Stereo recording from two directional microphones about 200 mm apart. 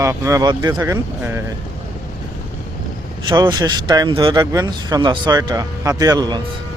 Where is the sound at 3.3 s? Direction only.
20° right (ahead or behind).